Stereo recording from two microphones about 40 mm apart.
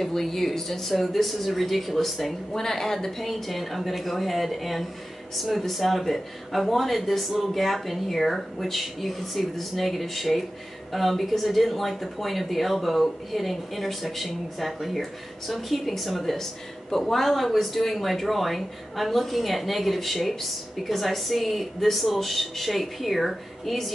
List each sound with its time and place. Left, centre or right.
0.0 s speech: centre